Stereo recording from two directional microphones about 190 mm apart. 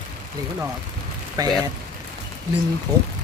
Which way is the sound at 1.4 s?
20° right (ahead or behind).